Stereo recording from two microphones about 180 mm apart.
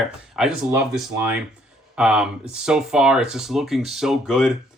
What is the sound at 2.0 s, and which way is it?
Speech, 5° right (ahead or behind).